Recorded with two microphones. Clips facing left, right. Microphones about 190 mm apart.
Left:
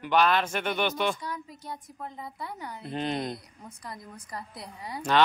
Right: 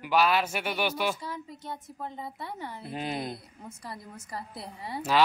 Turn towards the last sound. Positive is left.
turn(degrees=-5)  # may be behind; listen again after turning